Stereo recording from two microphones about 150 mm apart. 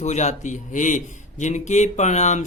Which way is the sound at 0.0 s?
50° left (ahead or behind).